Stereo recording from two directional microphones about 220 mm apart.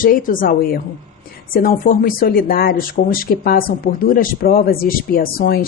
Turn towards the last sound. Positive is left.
turn(degrees=40)  # may be behind; listen again after turning